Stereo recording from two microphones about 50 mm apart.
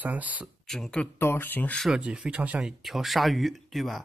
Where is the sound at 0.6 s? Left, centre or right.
Centre.